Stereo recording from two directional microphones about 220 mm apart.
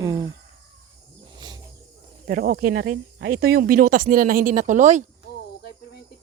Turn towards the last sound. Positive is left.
turn(degrees=-35)  # may be behind; listen again after turning